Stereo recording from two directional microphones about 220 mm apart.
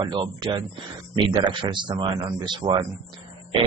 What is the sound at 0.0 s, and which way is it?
Speech, 20° right (ahead or behind).